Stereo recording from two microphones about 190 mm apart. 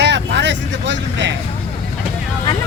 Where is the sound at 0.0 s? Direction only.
65° right (ahead or behind).